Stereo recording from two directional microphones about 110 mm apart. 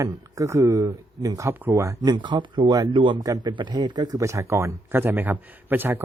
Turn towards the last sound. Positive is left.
turn(degrees=-15)  # may be behind; listen again after turning